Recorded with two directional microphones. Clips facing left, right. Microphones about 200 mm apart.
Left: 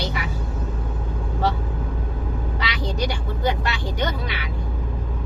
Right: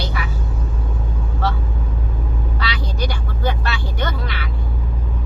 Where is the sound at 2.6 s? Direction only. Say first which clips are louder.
Even; 15° left (ahead or behind).